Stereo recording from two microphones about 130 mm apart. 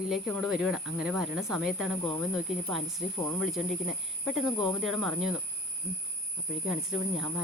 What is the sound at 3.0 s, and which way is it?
Speech, 25° left (ahead or behind).